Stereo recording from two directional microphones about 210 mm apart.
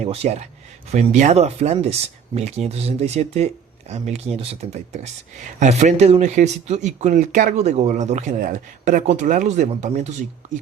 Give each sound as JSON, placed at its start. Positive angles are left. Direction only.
{"t": 0.0, "sound": "speech", "side_deg": -30}